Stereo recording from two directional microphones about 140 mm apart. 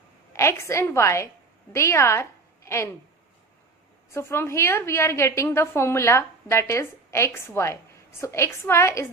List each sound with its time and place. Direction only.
0.3 s a woman's voice: 20° left (ahead or behind)
4.1 s a woman's voice: 20° left (ahead or behind)